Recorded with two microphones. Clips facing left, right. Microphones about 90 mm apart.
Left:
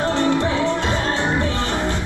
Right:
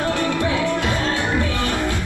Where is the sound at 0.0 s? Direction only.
20° left (ahead or behind).